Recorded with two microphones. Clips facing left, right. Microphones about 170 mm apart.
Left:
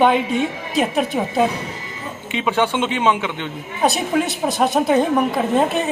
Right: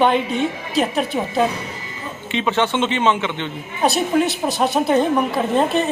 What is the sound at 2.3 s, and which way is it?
A woman's voice, 10° left (ahead or behind).